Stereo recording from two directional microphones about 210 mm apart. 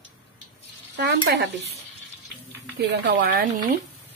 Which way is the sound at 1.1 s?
60° right (ahead or behind).